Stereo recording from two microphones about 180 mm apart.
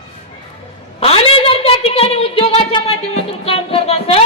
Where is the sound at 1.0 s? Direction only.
35° left (ahead or behind).